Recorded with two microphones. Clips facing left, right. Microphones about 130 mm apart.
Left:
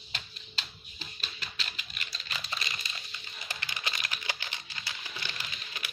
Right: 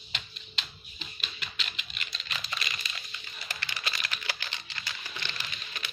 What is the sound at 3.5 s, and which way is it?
Typing, 15° left (ahead or behind).